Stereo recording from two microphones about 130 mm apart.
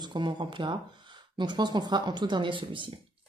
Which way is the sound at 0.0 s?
35° right (ahead or behind).